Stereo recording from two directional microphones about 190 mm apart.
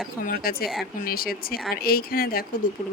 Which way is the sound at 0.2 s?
50° left (ahead or behind).